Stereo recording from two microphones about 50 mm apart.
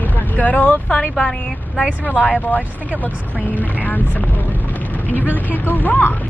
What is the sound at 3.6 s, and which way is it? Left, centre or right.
Speech, left.